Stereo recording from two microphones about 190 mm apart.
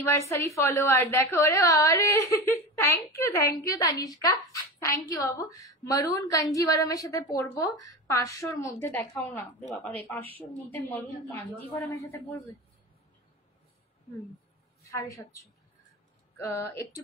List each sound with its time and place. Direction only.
0.0 s a woman's voice: 15° left (ahead or behind)
14.9 s a woman's voice: 15° left (ahead or behind)
16.3 s a woman's voice: 15° left (ahead or behind)